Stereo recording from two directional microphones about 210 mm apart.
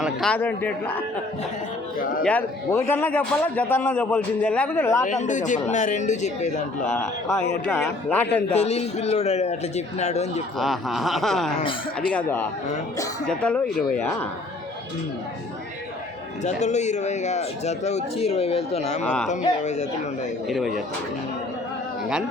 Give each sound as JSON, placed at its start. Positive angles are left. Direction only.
{"t": 0.0, "sound": "a man's voice", "side_deg": 5}
{"t": 2.2, "sound": "a man's voice", "side_deg": 10}
{"t": 5.0, "sound": "speech", "side_deg": 35}
{"t": 6.9, "sound": "a man's voice", "side_deg": 10}
{"t": 8.5, "sound": "speech", "side_deg": 30}
{"t": 10.6, "sound": "a man's voice", "side_deg": 0}
{"t": 16.4, "sound": "speech", "side_deg": 35}
{"t": 19.0, "sound": "speech", "side_deg": 5}
{"t": 19.3, "sound": "speech", "side_deg": 35}